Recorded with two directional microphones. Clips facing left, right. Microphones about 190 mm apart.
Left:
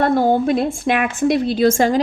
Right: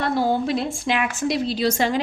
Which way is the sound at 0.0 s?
50° left (ahead or behind).